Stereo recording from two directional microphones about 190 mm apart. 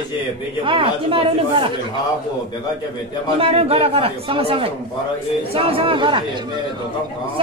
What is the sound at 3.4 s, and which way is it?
Speech, 30° right (ahead or behind).